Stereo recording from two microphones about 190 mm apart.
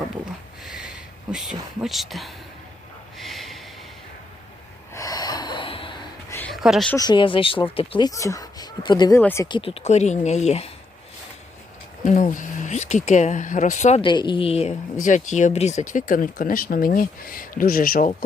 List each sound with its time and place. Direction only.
0.6 s a sound: 5° right (ahead or behind)
1.8 s speech: centre (ahead or behind)
3.2 s snort: centre (ahead or behind)
4.9 s gasp: 20° left (ahead or behind)
6.5 s speech: centre (ahead or behind)
6.9 s speech: 20° left (ahead or behind)
9.6 s speech: 30° left (ahead or behind)
12.0 s speech: 40° left (ahead or behind)
14.0 s speech: 25° left (ahead or behind); by 18.3 s 45° left (ahead or behind)